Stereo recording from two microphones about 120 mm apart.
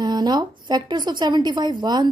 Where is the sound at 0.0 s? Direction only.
35° right (ahead or behind).